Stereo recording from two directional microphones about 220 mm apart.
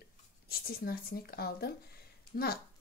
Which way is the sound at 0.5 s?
40° left (ahead or behind).